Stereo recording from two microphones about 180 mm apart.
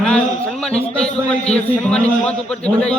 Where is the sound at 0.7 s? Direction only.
35° left (ahead or behind).